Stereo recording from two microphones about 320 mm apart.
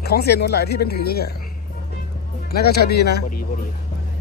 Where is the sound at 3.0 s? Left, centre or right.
Left.